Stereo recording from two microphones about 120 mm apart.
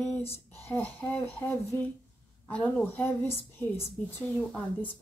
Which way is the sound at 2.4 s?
10° left (ahead or behind).